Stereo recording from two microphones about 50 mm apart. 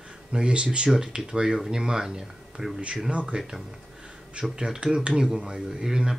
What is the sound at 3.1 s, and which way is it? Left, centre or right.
Speech, right.